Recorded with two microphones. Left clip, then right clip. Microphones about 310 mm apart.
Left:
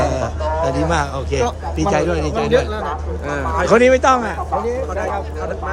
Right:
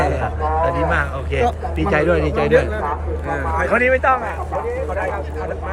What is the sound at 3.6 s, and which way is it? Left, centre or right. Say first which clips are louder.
Speech: left 4 dB; left.